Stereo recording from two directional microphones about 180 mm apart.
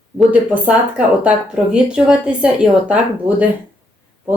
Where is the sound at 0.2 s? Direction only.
5° right (ahead or behind).